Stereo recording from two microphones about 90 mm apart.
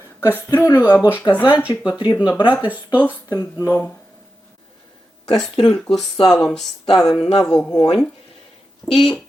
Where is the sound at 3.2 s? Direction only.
40° left (ahead or behind).